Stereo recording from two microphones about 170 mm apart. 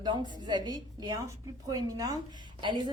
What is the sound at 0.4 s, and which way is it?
A woman's voice, 25° right (ahead or behind).